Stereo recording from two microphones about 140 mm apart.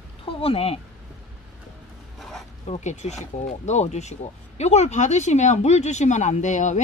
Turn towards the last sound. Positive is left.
turn(degrees=60)  # may be behind; listen again after turning